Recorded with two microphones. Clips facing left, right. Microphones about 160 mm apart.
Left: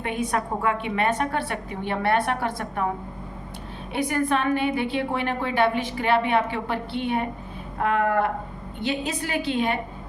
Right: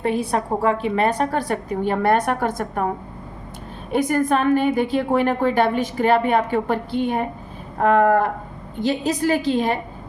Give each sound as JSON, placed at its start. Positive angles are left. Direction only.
{"t": 0.0, "sound": "a woman's voice", "side_deg": -35}
{"t": 3.9, "sound": "a woman's voice", "side_deg": -45}